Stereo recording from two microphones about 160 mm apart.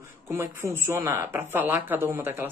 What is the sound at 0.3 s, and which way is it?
Speech, 15° right (ahead or behind).